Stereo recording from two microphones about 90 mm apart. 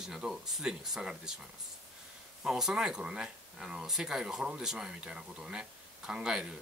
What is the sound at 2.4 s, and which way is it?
Speech, 5° right (ahead or behind).